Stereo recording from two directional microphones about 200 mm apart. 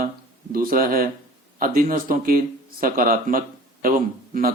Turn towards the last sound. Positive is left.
turn(degrees=-45)  # may be behind; listen again after turning